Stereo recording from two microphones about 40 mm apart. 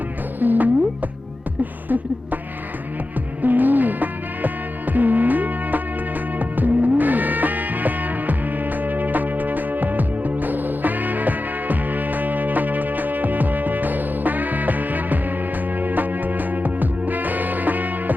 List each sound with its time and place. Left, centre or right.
0.3 s music: right
1.9 s a sound: right
3.4 s music: right